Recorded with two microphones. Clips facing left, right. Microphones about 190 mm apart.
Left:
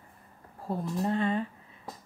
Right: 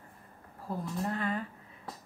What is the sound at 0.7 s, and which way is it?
Speech, 25° left (ahead or behind).